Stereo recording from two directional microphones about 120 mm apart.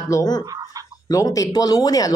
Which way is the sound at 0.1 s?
35° left (ahead or behind).